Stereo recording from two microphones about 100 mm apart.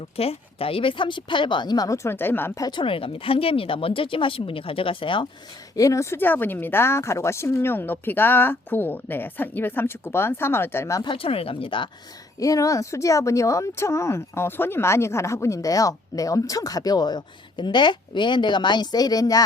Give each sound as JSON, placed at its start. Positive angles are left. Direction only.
{"t": 0.2, "sound": "a woman's voice", "side_deg": 75}
{"t": 2.6, "sound": "a woman's voice", "side_deg": 40}
{"t": 2.8, "sound": "speech", "side_deg": 65}
{"t": 5.7, "sound": "speech", "side_deg": 35}
{"t": 11.0, "sound": "speech", "side_deg": 60}
{"t": 12.4, "sound": "speech", "side_deg": 35}